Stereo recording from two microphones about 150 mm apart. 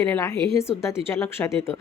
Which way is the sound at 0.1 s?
20° left (ahead or behind).